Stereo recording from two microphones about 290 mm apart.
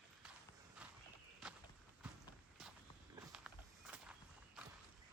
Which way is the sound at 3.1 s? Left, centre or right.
Centre.